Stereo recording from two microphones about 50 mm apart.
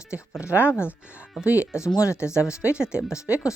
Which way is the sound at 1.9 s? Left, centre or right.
Left.